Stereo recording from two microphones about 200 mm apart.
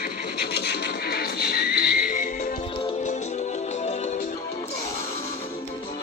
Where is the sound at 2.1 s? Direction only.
40° left (ahead or behind).